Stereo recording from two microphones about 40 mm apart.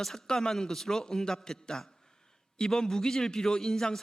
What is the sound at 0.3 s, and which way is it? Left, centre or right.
A man's voice, centre.